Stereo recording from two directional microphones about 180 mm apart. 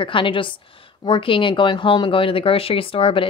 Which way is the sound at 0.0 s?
30° left (ahead or behind).